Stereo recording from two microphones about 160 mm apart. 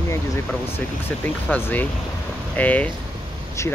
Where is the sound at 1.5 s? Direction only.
10° left (ahead or behind).